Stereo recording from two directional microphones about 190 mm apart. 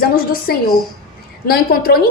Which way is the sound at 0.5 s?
55° left (ahead or behind).